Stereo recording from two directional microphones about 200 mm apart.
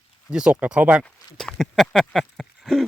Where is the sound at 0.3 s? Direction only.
5° right (ahead or behind).